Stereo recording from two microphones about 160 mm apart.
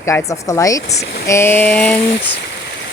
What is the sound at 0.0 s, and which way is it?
Speech, 20° left (ahead or behind).